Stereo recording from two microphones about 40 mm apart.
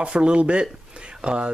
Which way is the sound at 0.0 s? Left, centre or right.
Right.